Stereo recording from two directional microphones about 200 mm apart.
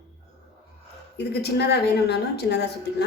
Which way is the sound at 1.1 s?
55° left (ahead or behind).